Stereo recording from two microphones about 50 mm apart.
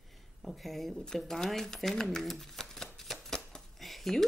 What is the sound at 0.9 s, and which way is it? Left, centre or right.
Speech, centre.